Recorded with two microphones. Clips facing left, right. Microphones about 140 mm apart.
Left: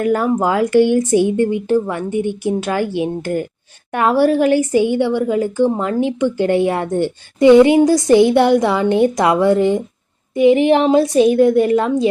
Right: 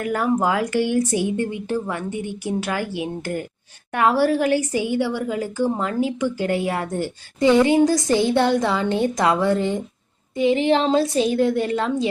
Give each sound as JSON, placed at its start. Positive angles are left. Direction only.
{"t": 0.0, "sound": "a woman's voice", "side_deg": 25}